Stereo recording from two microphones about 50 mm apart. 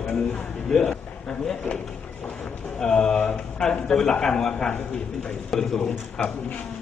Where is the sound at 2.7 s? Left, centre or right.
Centre.